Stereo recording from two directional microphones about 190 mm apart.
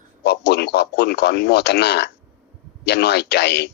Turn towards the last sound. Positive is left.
turn(degrees=60)  # may be behind; listen again after turning